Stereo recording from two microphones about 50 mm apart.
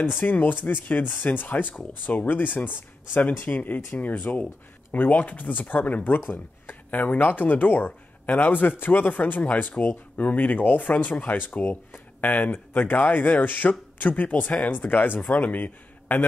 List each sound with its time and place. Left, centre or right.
0.0 s speech: left